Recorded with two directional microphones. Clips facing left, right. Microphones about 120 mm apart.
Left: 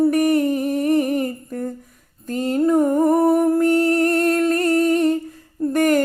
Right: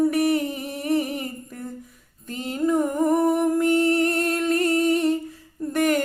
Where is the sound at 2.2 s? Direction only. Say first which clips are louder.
Left 6 dB; 40° left (ahead or behind).